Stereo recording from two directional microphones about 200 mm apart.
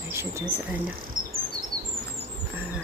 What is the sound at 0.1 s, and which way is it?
Speech, 15° right (ahead or behind).